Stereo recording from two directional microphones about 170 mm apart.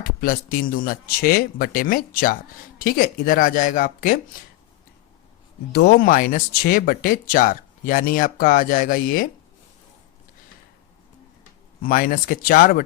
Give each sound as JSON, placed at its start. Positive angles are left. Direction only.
{"t": 0.0, "sound": "speech", "side_deg": 55}
{"t": 5.7, "sound": "speech", "side_deg": 65}
{"t": 11.8, "sound": "speech", "side_deg": 55}